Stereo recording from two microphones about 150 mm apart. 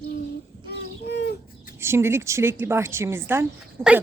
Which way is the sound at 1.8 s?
15° right (ahead or behind).